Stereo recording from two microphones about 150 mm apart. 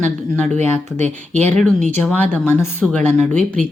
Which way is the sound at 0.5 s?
50° right (ahead or behind).